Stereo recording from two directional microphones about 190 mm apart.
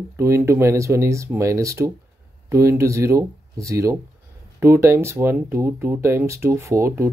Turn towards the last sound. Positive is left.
turn(degrees=-15)  # may be behind; listen again after turning